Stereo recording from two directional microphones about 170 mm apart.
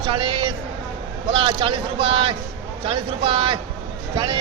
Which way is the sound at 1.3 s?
30° right (ahead or behind).